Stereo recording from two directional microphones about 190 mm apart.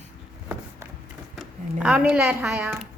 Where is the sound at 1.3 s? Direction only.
5° right (ahead or behind).